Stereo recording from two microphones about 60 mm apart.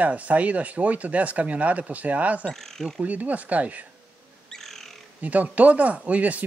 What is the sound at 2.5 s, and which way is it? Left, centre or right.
Speech, centre.